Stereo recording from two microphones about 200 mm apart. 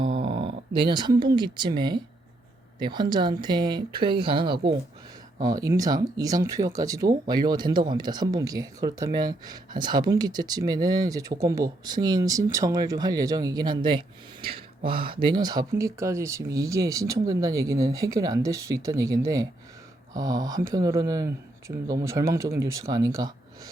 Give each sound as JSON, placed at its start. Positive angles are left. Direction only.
{"t": 0.0, "sound": "speech", "side_deg": -25}